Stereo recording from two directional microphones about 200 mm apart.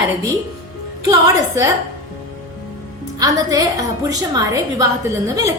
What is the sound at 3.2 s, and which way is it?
A woman's voice, 15° right (ahead or behind).